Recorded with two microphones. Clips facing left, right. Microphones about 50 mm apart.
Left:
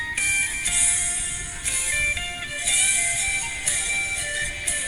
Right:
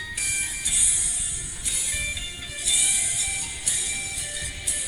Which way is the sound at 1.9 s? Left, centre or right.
Left.